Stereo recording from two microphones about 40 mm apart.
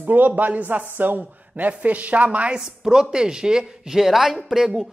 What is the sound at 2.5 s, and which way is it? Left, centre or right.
A woman's voice, centre.